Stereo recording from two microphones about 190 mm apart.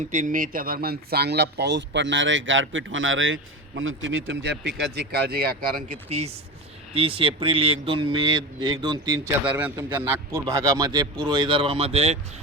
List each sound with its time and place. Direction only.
0.0 s speech: 40° right (ahead or behind)
6.1 s a man's voice: 35° right (ahead or behind)
10.3 s a man's voice: 20° right (ahead or behind)